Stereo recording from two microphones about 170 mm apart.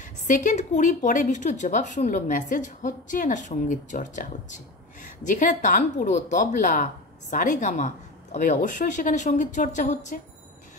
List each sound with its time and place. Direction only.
0.0 s a woman's voice: 50° left (ahead or behind)